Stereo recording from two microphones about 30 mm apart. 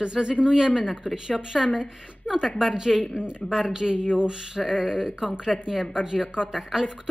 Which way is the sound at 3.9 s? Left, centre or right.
Right.